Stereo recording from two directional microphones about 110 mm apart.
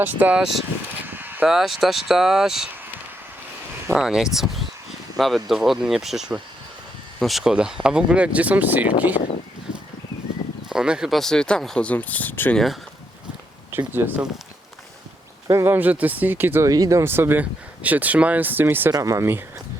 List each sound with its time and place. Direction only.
0.0 s speech: 15° right (ahead or behind)
1.0 s a sound: 20° right (ahead or behind)
1.5 s speech: 5° right (ahead or behind)
3.9 s speech: 5° right (ahead or behind)
10.7 s speech: 5° right (ahead or behind); by 12.5 s 15° left (ahead or behind)
13.7 s speech: 20° right (ahead or behind)
15.4 s speech: 25° right (ahead or behind)
18.9 s speech: 30° right (ahead or behind)